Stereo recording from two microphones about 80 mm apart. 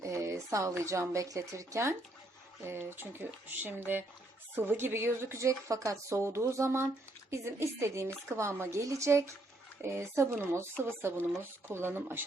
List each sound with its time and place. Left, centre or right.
0.0 s a woman's voice: right